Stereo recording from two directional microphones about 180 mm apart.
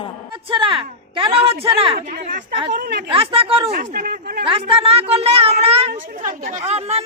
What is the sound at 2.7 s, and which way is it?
Speech, 60° right (ahead or behind).